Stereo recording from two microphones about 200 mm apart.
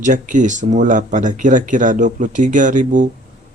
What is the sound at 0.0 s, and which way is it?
Speech, 40° right (ahead or behind).